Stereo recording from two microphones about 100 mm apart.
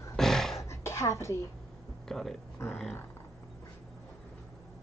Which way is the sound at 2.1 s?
5° left (ahead or behind).